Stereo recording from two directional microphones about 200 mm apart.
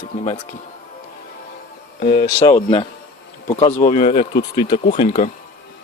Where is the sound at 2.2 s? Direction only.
15° left (ahead or behind).